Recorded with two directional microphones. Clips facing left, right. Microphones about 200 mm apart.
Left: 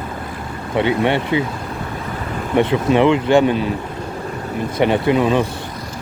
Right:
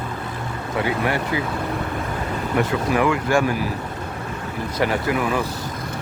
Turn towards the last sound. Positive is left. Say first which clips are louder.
# left 6 dB
turn(degrees=25)  # may be behind; listen again after turning